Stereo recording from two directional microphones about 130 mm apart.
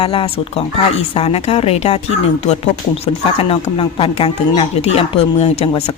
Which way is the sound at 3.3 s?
45° left (ahead or behind).